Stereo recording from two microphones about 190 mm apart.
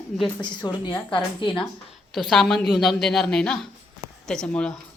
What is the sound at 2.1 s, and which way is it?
A woman's voice, centre (ahead or behind).